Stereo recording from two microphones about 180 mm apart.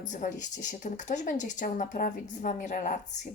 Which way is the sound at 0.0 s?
45° left (ahead or behind).